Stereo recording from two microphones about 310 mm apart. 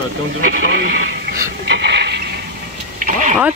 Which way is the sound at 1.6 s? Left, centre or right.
Right.